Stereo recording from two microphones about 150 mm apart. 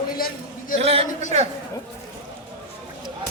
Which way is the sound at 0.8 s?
40° right (ahead or behind).